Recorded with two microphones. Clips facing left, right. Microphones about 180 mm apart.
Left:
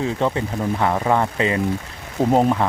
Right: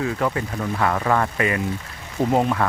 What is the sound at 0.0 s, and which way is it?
Speech, 25° left (ahead or behind).